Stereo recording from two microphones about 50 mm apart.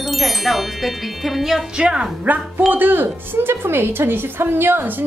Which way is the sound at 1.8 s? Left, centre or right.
Centre.